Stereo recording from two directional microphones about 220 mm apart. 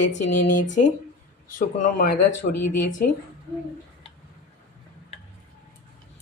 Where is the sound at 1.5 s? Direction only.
35° left (ahead or behind).